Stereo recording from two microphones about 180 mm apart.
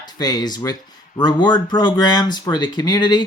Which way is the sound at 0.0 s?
25° left (ahead or behind).